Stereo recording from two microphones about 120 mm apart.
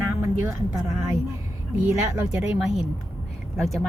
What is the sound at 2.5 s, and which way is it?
Speech, 5° right (ahead or behind).